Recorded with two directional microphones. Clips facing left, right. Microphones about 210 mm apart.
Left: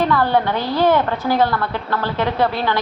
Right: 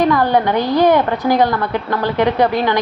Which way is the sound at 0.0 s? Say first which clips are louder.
Right 3 dB; 15° right (ahead or behind).